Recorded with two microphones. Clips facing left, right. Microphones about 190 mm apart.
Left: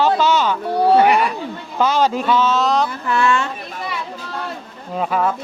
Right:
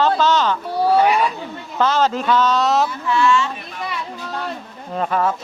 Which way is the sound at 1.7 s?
10° left (ahead or behind).